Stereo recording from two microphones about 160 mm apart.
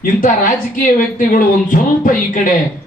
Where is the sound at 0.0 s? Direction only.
55° left (ahead or behind).